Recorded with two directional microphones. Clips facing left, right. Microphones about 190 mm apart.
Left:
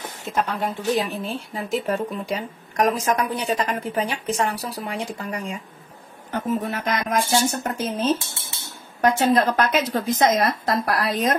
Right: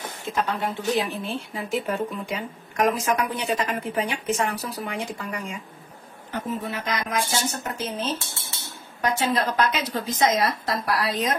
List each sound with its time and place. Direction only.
0.3 s a woman's voice: 40° left (ahead or behind)
6.7 s a woman's voice: 45° left (ahead or behind)